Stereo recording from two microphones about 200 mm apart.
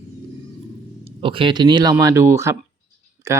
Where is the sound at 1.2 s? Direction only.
25° right (ahead or behind).